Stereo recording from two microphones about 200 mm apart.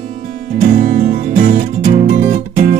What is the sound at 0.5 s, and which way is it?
Music, 40° right (ahead or behind).